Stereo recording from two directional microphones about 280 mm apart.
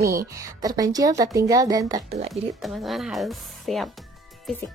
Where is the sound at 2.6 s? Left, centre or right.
Centre.